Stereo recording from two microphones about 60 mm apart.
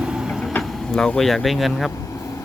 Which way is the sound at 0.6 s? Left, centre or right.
Centre.